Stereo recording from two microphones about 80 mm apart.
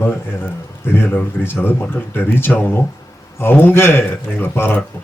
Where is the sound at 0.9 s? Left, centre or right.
Left.